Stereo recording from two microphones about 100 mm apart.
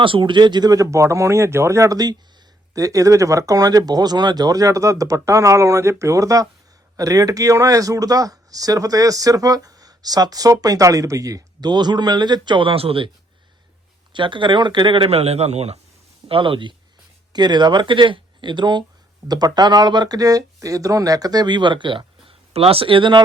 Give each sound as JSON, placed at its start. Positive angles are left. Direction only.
{"t": 0.0, "sound": "speech", "side_deg": -55}
{"t": 14.1, "sound": "speech", "side_deg": -55}
{"t": 16.3, "sound": "speech", "side_deg": -60}
{"t": 17.3, "sound": "speech", "side_deg": -45}